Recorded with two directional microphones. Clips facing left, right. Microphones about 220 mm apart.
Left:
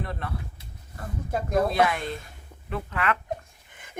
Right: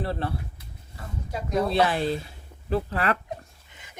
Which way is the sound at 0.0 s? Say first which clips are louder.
Right 5 dB; 30° right (ahead or behind).